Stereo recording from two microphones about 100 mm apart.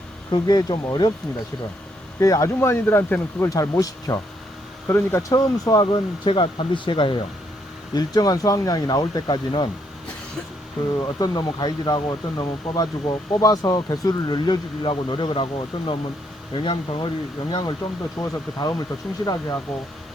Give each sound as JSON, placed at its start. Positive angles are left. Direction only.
{"t": 0.3, "sound": "speech", "side_deg": 45}
{"t": 2.1, "sound": "speech", "side_deg": 30}
{"t": 3.5, "sound": "speech", "side_deg": 35}
{"t": 5.3, "sound": "speech", "side_deg": 40}
{"t": 6.2, "sound": "speech", "side_deg": 60}
{"t": 7.9, "sound": "speech", "side_deg": 40}
{"t": 10.9, "sound": "speech", "side_deg": 40}
{"t": 17.5, "sound": "speech", "side_deg": 40}